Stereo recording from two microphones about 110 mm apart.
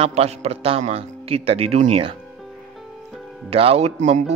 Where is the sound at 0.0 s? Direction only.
65° right (ahead or behind).